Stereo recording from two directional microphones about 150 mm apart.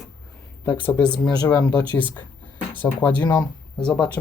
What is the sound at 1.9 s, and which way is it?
Speech, 10° left (ahead or behind).